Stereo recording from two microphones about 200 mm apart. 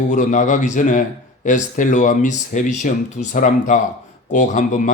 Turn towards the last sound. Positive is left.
turn(degrees=40)  # may be behind; listen again after turning